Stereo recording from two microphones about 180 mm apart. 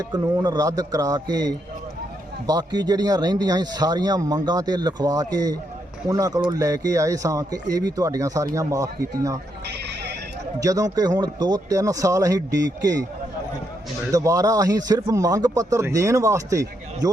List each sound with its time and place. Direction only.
0.0 s speech: 20° right (ahead or behind)
10.6 s speech: 20° right (ahead or behind)
14.1 s speech: 20° right (ahead or behind)